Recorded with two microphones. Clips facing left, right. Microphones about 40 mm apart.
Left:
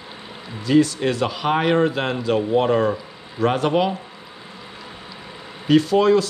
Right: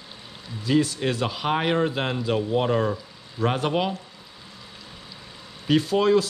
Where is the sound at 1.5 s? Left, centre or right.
Centre.